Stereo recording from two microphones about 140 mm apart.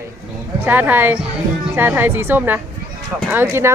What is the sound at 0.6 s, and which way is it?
Speech, 15° right (ahead or behind).